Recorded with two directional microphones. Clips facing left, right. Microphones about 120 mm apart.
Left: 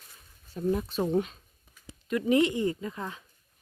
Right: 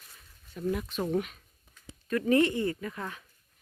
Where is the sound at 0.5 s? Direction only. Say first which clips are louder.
Left 3 dB; 30° left (ahead or behind).